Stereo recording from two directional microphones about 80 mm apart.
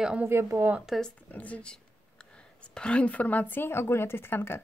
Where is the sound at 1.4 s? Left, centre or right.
Centre.